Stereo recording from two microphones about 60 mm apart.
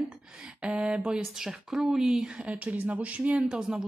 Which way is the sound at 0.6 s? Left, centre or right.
Centre.